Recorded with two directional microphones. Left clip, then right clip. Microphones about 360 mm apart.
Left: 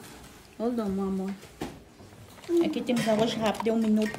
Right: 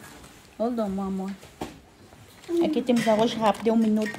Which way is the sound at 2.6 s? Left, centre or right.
Centre.